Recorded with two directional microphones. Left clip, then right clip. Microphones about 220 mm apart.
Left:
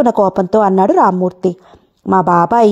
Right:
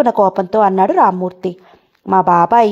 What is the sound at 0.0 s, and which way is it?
A woman's voice, 35° left (ahead or behind).